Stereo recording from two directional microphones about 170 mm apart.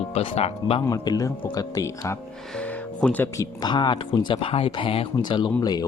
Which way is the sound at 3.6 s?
25° left (ahead or behind).